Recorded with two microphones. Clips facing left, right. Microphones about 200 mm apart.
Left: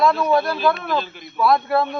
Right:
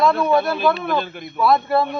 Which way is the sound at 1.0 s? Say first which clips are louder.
Right 3 dB; 55° right (ahead or behind).